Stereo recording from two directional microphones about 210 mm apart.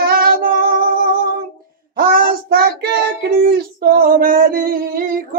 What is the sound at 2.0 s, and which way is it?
Child singing, 45° right (ahead or behind).